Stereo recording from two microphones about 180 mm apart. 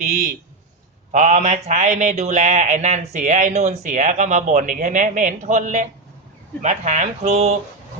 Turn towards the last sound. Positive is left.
turn(degrees=-35)  # may be behind; listen again after turning